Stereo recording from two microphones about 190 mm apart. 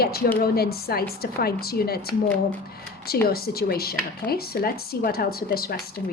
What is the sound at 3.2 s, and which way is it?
A woman's voice, 55° left (ahead or behind).